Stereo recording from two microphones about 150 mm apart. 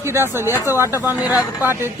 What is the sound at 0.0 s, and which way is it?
Speech, 15° right (ahead or behind).